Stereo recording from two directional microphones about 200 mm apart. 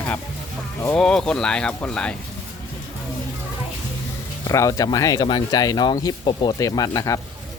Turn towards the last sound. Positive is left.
turn(degrees=20)  # may be behind; listen again after turning